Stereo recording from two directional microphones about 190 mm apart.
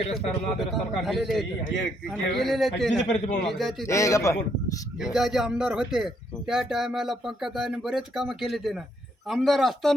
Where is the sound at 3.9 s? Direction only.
15° left (ahead or behind).